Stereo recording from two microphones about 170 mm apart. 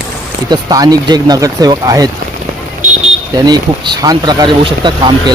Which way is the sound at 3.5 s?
25° right (ahead or behind).